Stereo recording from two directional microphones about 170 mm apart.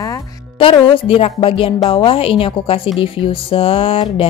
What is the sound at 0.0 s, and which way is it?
A woman's voice, 25° left (ahead or behind).